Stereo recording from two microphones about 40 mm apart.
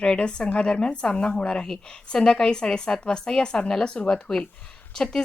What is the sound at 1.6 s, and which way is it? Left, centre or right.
A woman's voice, centre.